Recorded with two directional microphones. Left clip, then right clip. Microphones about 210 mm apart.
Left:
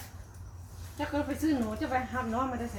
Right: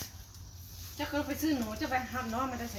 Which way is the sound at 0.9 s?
5° left (ahead or behind).